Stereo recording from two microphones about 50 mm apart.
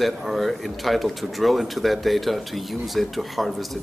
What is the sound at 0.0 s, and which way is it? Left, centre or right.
Speech, centre.